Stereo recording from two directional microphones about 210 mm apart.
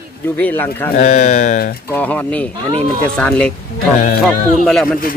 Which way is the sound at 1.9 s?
5° left (ahead or behind).